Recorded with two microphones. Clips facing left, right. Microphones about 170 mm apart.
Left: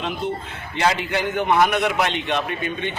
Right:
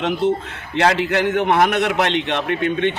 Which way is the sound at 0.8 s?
70° right (ahead or behind).